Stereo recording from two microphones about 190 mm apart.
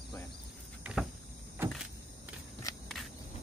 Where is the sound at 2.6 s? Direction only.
15° left (ahead or behind).